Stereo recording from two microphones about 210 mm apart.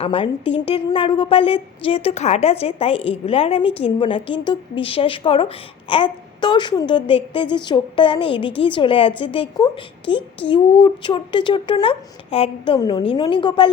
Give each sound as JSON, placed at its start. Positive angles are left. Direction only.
{"t": 0.0, "sound": "a woman's voice", "side_deg": 25}